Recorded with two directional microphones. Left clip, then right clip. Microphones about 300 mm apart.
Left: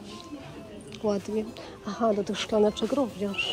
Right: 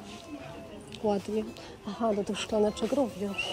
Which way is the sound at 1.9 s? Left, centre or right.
Left.